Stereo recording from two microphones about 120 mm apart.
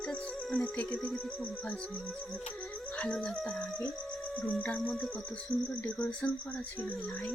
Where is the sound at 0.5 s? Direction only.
10° left (ahead or behind).